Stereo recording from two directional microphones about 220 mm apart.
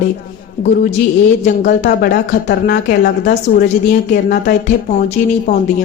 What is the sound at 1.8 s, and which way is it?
A woman's voice, 45° left (ahead or behind).